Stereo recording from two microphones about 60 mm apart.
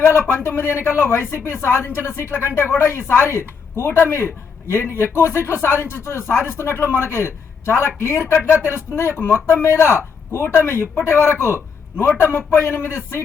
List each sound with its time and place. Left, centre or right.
0.0 s a man's voice: left